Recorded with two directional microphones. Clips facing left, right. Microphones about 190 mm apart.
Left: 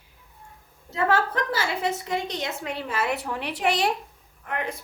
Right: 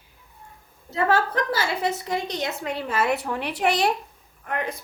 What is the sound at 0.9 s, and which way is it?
A woman's voice, 35° right (ahead or behind).